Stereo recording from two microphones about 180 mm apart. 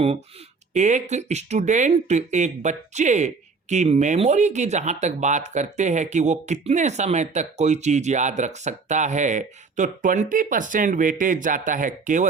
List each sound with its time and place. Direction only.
0.7 s speech: 40° right (ahead or behind)